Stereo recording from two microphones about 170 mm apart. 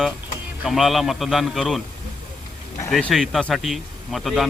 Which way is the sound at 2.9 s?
Centre (ahead or behind).